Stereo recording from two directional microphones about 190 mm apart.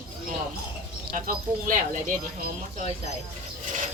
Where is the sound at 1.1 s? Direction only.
45° right (ahead or behind).